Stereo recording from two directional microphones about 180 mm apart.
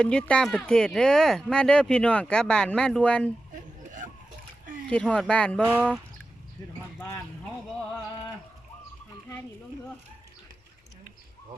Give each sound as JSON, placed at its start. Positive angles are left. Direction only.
{"t": 0.0, "sound": "speech", "side_deg": 5}
{"t": 3.5, "sound": "a sound", "side_deg": -45}
{"t": 4.9, "sound": "speech", "side_deg": 5}
{"t": 5.6, "sound": "speech", "side_deg": -10}